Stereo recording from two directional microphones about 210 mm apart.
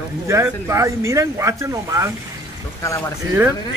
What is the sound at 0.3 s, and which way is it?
Speech, 15° right (ahead or behind).